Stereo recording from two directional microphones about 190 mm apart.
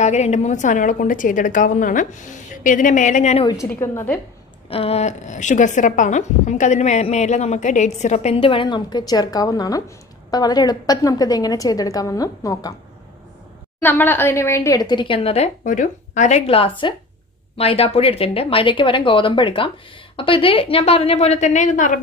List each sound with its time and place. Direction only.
0.0 s a woman's voice: 35° left (ahead or behind)
3.8 s a woman's voice: 15° left (ahead or behind)
4.6 s a woman's voice: 30° left (ahead or behind)
13.7 s a woman's voice: 10° left (ahead or behind); by 22.0 s 40° left (ahead or behind)